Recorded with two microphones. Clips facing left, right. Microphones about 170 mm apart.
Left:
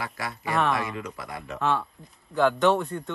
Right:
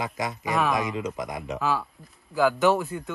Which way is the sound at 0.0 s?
20° right (ahead or behind).